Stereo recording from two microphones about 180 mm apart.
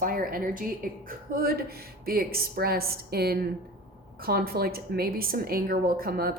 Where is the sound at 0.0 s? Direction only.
50° right (ahead or behind).